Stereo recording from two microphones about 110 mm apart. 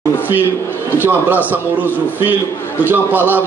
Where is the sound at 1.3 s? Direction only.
15° right (ahead or behind).